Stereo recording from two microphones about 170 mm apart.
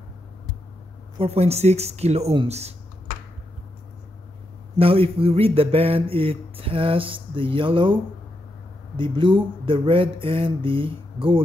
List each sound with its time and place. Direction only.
1.1 s speech: 35° right (ahead or behind)
4.7 s speech: 35° right (ahead or behind)